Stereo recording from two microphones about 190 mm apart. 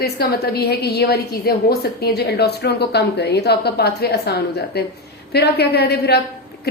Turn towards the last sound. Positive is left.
turn(degrees=60)  # may be behind; listen again after turning